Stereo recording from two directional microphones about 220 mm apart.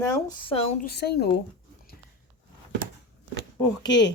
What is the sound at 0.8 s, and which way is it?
Speech, 50° left (ahead or behind).